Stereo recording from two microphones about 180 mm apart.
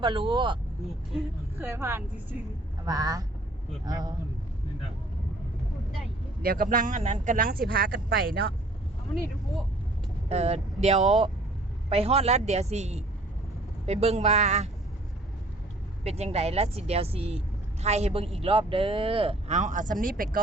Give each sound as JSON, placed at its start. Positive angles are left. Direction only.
{"t": 0.0, "sound": "speech", "side_deg": -25}
{"t": 1.5, "sound": "a woman's voice", "side_deg": -15}
{"t": 6.4, "sound": "speech", "side_deg": -55}
{"t": 10.2, "sound": "a man's voice", "side_deg": -35}
{"t": 16.0, "sound": "a man's voice", "side_deg": -35}